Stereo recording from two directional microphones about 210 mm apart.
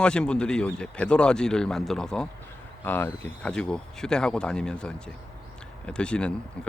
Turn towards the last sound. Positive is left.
turn(degrees=5)  # may be behind; listen again after turning